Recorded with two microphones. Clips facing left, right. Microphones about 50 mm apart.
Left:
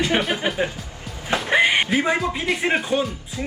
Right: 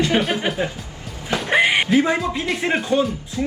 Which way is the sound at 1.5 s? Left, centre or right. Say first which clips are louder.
Right 1 dB; centre.